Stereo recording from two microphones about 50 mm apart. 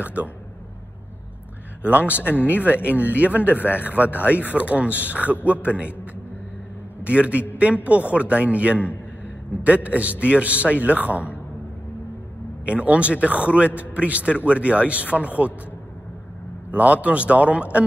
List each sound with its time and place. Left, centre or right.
0.0 s speech: right
1.9 s a man's voice: right
2.2 s speech: left
3.0 s a man's voice: right
7.1 s a man's voice: right
12.6 s a man's voice: right
16.7 s a man's voice: right